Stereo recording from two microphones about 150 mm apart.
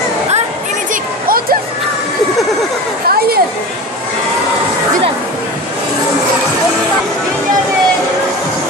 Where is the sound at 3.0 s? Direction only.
90° right.